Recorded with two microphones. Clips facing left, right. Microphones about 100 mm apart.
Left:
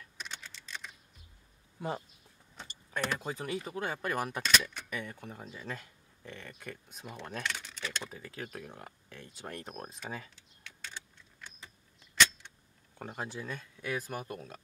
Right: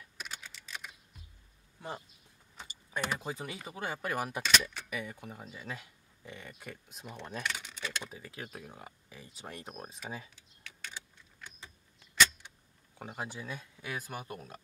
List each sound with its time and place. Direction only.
0.2 s typing: 5° right (ahead or behind)
2.5 s speech: 5° right (ahead or behind)
13.0 s speech: 5° right (ahead or behind)